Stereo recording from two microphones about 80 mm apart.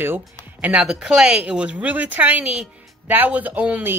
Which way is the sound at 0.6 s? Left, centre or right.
Centre.